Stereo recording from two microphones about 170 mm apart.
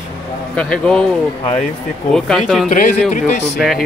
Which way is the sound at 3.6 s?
Centre (ahead or behind).